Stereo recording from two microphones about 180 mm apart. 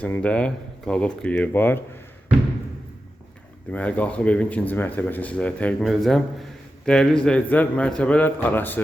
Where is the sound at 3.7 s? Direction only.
10° left (ahead or behind).